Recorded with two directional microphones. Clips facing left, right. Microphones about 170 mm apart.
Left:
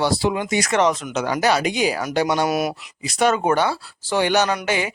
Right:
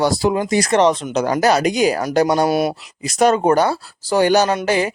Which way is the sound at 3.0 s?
45° right (ahead or behind).